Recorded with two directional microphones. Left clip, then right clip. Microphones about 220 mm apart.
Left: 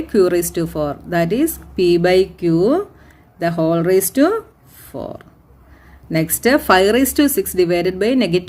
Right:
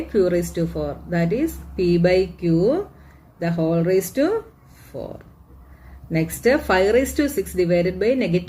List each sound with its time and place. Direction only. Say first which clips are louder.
0.1 s speech: left 5 dB; 50° left (ahead or behind)